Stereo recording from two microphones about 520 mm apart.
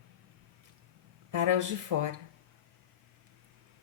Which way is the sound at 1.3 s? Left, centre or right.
Right.